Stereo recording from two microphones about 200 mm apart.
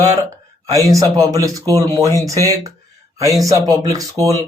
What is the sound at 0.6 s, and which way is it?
Speech, 15° right (ahead or behind).